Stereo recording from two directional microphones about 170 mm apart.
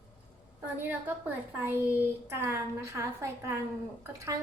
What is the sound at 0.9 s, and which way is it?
A child's voice, 10° right (ahead or behind).